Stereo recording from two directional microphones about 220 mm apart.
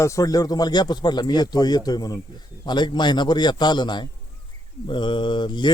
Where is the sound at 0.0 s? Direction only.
15° left (ahead or behind).